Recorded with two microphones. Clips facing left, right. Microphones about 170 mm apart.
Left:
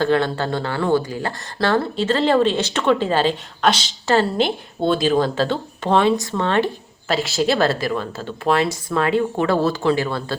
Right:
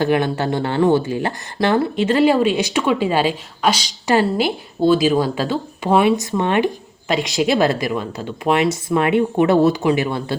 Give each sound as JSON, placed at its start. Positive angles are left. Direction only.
{"t": 0.0, "sound": "speech", "side_deg": -15}